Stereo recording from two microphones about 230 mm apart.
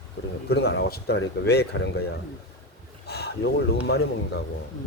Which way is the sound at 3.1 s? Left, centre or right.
Left.